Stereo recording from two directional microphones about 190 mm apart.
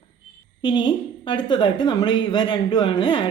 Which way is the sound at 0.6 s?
25° left (ahead or behind).